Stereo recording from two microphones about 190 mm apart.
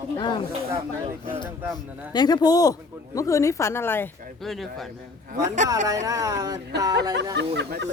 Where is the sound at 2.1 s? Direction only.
20° left (ahead or behind).